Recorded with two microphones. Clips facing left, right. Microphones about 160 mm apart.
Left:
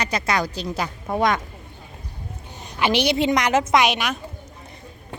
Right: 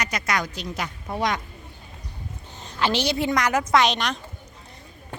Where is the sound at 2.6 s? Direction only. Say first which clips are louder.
Left 3 dB; 15° left (ahead or behind).